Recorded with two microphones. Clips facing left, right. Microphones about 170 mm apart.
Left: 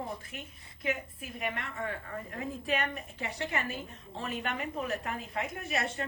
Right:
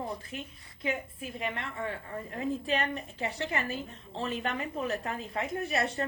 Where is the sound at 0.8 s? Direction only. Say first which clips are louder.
Right 1 dB; 30° right (ahead or behind).